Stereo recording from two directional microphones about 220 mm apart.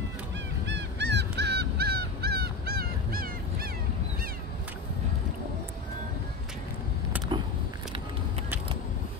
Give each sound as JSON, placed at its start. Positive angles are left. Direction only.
{"t": 0.7, "sound": "honk", "side_deg": -50}